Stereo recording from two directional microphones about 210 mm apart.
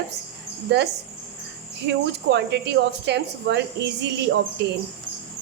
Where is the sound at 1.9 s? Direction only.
55° right (ahead or behind).